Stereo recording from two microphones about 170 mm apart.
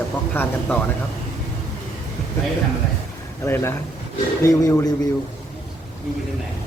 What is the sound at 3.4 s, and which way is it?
Speech, 15° left (ahead or behind).